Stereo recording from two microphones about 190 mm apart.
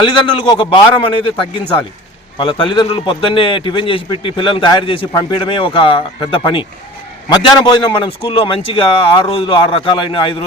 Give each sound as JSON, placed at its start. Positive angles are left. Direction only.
{"t": 0.0, "sound": "a man's voice", "side_deg": 25}